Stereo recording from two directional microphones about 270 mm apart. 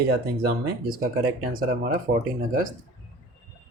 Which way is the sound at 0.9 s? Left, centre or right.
Right.